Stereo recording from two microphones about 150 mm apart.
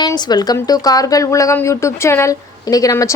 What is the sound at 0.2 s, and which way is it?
A woman's voice, 25° left (ahead or behind).